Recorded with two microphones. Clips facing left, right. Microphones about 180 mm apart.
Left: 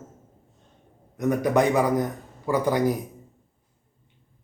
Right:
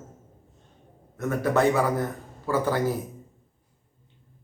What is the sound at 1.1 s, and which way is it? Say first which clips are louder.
A man's voice: left 2 dB; 15° left (ahead or behind).